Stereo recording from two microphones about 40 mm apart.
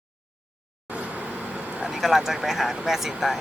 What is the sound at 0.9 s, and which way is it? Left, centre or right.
Vehicle, right.